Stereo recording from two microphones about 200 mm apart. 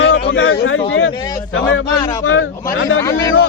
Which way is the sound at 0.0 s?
60° left (ahead or behind).